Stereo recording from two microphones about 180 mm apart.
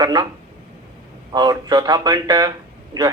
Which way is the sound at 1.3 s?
25° right (ahead or behind).